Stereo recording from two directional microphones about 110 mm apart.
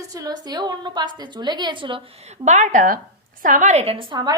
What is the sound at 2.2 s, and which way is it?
A woman's voice, 90° right.